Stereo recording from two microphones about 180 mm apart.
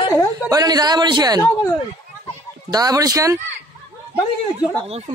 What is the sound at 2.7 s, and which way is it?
Speech, 20° right (ahead or behind).